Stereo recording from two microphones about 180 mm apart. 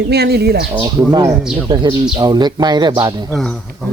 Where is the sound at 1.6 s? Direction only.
25° right (ahead or behind).